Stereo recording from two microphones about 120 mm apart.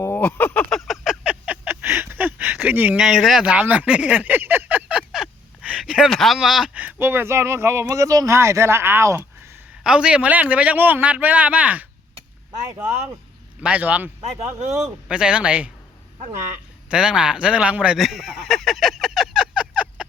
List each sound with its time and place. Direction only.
0.0 s speech: 15° left (ahead or behind)
0.7 s a sound: centre (ahead or behind)
3.0 s a sound: centre (ahead or behind)
6.1 s speech: centre (ahead or behind)
6.8 s speech: 20° right (ahead or behind)
9.8 s a man's voice: 10° right (ahead or behind)
13.6 s a man's voice: 10° right (ahead or behind)
14.2 s speech: 65° right (ahead or behind)
14.8 s a man's voice: 5° right (ahead or behind)
16.9 s a sound: 5° right (ahead or behind)